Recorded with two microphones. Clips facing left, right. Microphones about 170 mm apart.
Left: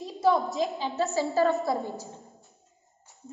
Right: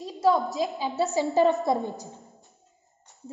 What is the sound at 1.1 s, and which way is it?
A woman's voice, 20° right (ahead or behind).